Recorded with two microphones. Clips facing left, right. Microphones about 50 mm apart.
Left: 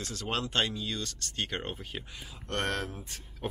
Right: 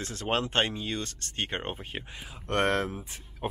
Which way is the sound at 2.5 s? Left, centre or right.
Centre.